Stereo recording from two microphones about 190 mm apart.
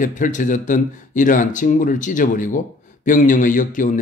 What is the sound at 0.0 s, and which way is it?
A man's voice, 40° left (ahead or behind).